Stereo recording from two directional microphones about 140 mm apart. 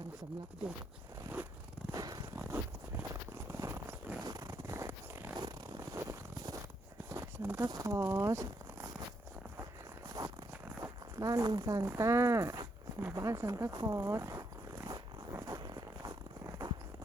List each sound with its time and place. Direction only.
1.9 s a sound: 25° right (ahead or behind)
3.5 s zipper: 20° right (ahead or behind)
4.2 s a sound: 25° right (ahead or behind)
7.7 s speech: 20° right (ahead or behind)
10.1 s zipper: 25° right (ahead or behind)
10.8 s speech: 25° right (ahead or behind)
14.8 s zipper: 25° right (ahead or behind)